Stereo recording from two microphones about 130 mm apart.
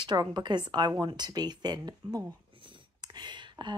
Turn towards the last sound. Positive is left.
turn(degrees=-35)  # may be behind; listen again after turning